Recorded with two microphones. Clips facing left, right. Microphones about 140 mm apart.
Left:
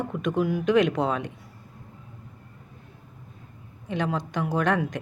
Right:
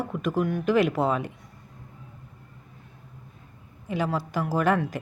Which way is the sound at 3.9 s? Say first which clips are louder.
Even; 5° right (ahead or behind).